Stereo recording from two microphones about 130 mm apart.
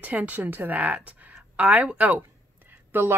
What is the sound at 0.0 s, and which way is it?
A woman's voice, 10° right (ahead or behind).